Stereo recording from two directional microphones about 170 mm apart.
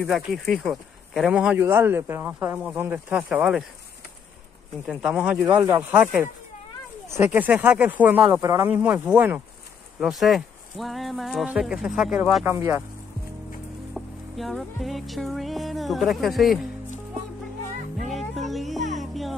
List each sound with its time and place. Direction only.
0.0 s speech: centre (ahead or behind)
4.8 s speech: 5° right (ahead or behind)
12.4 s speech: 15° right (ahead or behind)
13.9 s music: centre (ahead or behind)
17.9 s music: centre (ahead or behind)